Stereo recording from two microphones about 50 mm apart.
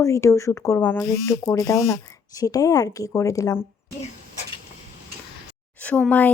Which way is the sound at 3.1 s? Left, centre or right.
Left.